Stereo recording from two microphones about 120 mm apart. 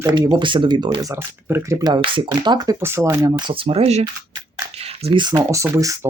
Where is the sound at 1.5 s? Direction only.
20° right (ahead or behind).